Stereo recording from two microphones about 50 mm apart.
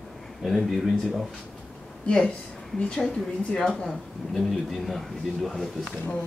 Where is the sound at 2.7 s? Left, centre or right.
Left; by 5.9 s centre.